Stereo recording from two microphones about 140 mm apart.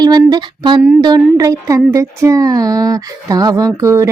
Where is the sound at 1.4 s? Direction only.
25° right (ahead or behind).